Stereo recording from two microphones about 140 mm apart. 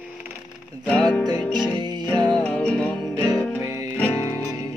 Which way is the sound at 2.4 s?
10° left (ahead or behind).